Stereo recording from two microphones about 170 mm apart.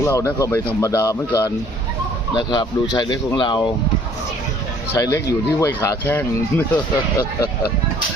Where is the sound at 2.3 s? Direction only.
25° left (ahead or behind).